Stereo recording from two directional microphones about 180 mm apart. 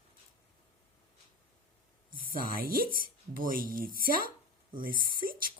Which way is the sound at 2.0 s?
50° right (ahead or behind).